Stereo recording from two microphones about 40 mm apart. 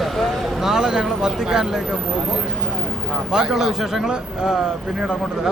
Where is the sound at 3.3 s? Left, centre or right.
Centre.